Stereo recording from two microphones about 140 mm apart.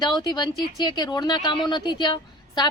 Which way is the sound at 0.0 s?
30° left (ahead or behind).